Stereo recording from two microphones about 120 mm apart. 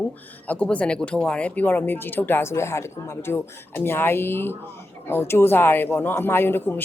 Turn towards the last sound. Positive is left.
turn(degrees=15)  # may be behind; listen again after turning